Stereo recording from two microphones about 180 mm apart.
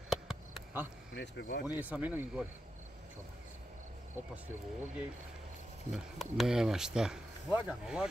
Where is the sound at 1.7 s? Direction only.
10° right (ahead or behind).